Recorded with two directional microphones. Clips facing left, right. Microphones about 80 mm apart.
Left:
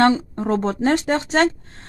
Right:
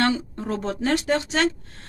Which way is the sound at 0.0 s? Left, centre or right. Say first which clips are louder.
Left 6 dB; left.